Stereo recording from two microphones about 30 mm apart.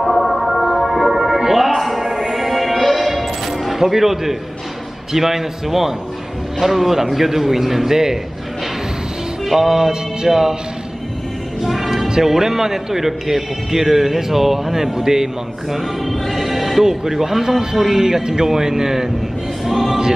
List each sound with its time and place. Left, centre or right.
0.0 s music: centre
5.1 s a man's voice: centre
9.5 s a man's voice: centre
12.2 s a man's voice: centre
15.7 s speech: centre
16.8 s a man's voice: centre
18.0 s a man's voice: right
19.7 s music: centre